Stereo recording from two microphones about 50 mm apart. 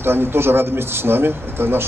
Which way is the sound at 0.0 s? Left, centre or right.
Right.